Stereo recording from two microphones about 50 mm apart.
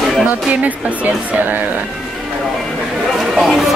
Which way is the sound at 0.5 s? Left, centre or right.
Right.